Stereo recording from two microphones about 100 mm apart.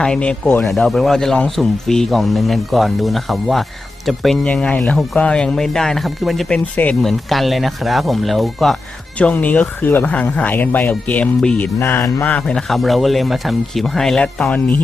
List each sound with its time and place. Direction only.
0.0 s a man's voice: 10° left (ahead or behind)
4.4 s a man's voice: 10° left (ahead or behind)
9.1 s speech: 15° left (ahead or behind)
12.2 s a man's voice: 15° left (ahead or behind)